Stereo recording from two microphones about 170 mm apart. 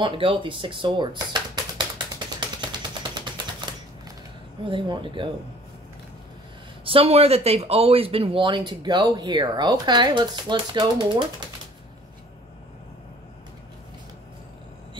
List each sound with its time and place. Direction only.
0.0 s speech: 30° right (ahead or behind)
2.1 s a sound: 25° right (ahead or behind)
4.6 s speech: 30° right (ahead or behind)
6.8 s speech: 35° right (ahead or behind)